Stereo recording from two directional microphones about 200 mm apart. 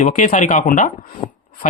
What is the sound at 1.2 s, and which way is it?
Speech, 25° left (ahead or behind).